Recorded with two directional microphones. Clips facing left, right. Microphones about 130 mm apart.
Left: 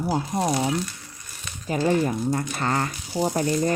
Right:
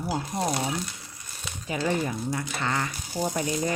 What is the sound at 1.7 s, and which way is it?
Speech, 35° left (ahead or behind).